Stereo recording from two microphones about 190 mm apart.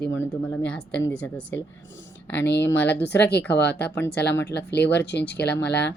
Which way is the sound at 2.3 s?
65° left (ahead or behind).